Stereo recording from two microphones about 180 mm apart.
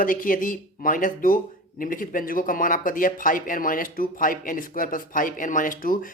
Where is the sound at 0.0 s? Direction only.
50° left (ahead or behind).